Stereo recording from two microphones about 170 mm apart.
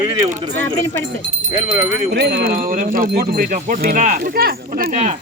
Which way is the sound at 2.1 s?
80° right.